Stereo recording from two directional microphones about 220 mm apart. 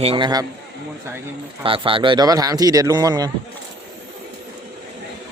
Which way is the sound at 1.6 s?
25° right (ahead or behind).